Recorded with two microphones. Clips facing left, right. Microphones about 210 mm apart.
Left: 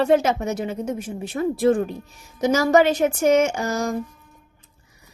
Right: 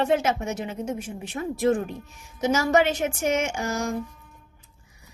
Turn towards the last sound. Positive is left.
turn(degrees=40)  # may be behind; listen again after turning